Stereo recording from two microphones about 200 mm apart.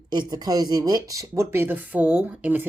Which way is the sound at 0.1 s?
20° right (ahead or behind).